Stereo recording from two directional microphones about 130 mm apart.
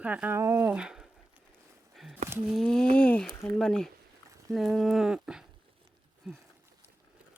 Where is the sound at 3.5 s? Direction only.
5° left (ahead or behind).